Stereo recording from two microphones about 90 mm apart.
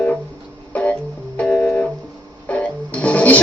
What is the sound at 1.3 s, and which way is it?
Music, 10° left (ahead or behind).